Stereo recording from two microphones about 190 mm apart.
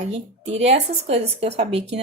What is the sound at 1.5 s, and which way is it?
Speech, 65° right (ahead or behind).